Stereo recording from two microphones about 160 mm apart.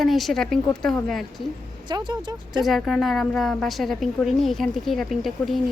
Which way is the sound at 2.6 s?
Centre (ahead or behind).